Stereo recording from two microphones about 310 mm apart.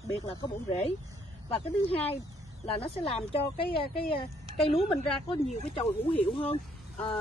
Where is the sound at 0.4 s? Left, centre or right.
Centre.